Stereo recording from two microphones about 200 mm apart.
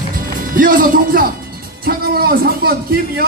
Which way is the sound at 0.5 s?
45° right (ahead or behind).